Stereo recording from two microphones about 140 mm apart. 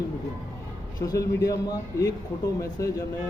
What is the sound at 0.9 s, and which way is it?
A man's voice, 25° left (ahead or behind).